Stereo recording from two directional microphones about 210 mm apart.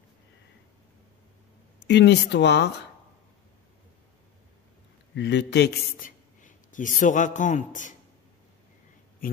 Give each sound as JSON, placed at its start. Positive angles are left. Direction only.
{"t": 1.9, "sound": "speech", "side_deg": 55}
{"t": 5.1, "sound": "a man's voice", "side_deg": 55}